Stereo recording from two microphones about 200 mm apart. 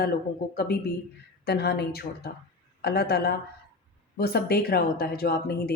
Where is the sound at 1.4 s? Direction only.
55° left (ahead or behind).